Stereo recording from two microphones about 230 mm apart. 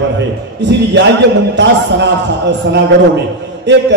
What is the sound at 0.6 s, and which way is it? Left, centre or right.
A man's voice, right.